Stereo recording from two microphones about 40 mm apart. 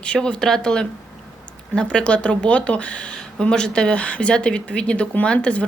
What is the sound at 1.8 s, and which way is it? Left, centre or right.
Speech, left.